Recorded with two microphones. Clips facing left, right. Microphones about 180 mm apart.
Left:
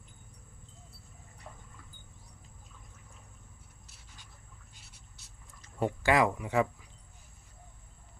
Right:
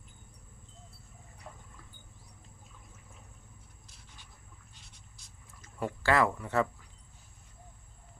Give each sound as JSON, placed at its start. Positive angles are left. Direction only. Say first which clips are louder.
{"t": 1.5, "sound": "water", "louder": "right 1 dB", "side_deg": 0}
{"t": 4.7, "sound": "a sound", "louder": "even", "side_deg": 5}
{"t": 5.6, "sound": "speech", "louder": "left 2 dB", "side_deg": 20}